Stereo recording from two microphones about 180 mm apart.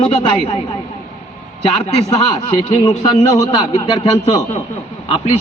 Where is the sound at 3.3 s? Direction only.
20° left (ahead or behind).